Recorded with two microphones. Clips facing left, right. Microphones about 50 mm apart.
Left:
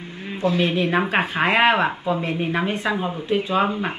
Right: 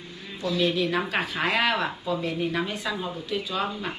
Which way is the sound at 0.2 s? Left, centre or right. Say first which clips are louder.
Left 5 dB; left.